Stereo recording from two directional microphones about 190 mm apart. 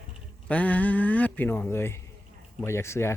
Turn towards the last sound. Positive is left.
turn(degrees=15)  # may be behind; listen again after turning